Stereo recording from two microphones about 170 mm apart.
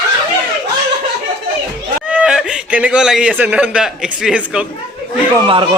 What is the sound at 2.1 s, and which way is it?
Speech, 5° right (ahead or behind).